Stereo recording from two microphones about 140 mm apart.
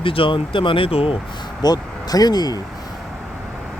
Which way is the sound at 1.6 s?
25° left (ahead or behind).